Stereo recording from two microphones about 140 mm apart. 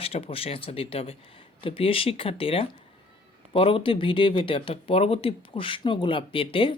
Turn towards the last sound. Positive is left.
turn(degrees=40)  # may be behind; listen again after turning